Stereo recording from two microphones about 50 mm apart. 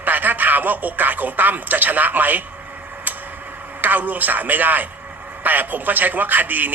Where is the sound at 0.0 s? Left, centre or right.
Right.